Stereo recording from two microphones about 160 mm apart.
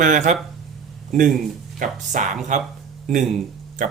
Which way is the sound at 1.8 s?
50° right (ahead or behind).